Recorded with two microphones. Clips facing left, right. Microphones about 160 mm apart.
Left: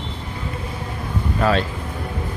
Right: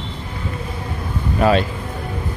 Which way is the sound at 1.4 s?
15° right (ahead or behind).